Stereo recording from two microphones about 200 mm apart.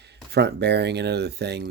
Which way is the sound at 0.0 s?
55° right (ahead or behind).